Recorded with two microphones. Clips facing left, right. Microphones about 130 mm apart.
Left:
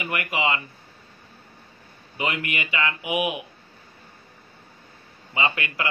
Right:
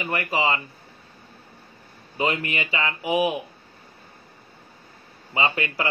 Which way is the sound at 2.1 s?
35° right (ahead or behind).